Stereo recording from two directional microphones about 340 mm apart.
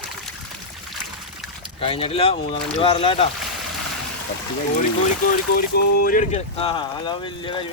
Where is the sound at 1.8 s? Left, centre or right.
Centre.